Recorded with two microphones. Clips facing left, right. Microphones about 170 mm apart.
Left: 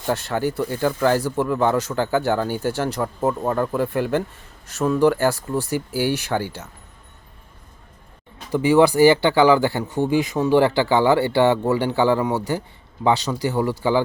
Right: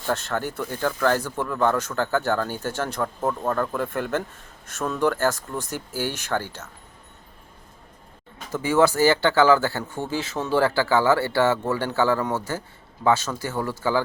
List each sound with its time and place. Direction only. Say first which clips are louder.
0.0 s speech: left 4 dB; 15° left (ahead or behind)
8.5 s speech: left 5 dB; 15° left (ahead or behind)